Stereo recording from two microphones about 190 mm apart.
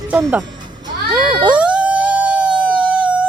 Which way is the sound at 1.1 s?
5° right (ahead or behind).